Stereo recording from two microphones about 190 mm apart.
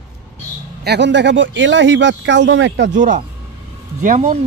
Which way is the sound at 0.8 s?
65° right (ahead or behind).